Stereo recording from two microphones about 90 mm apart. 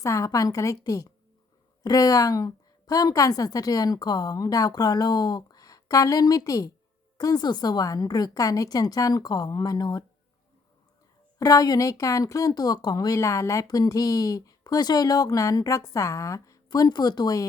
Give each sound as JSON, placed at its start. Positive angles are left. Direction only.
{"t": 0.0, "sound": "a woman's voice", "side_deg": 35}
{"t": 11.3, "sound": "speech", "side_deg": 40}
{"t": 13.1, "sound": "a woman's voice", "side_deg": 35}